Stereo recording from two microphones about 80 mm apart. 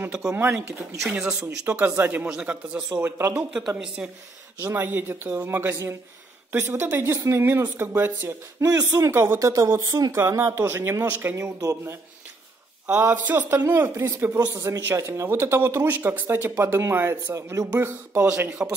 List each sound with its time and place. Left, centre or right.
0.4 s speech: right
2.9 s speech: right
3.5 s speech: centre
4.7 s speech: right
8.5 s speech: right
9.4 s speech: right
10.1 s speech: right
11.4 s speech: right
12.8 s speech: right
17.7 s speech: right
18.6 s speech: centre